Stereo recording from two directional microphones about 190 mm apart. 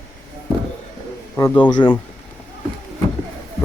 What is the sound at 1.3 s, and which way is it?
Speech, 10° left (ahead or behind).